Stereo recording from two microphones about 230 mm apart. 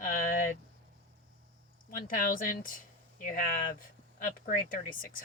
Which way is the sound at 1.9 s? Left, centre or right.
Left.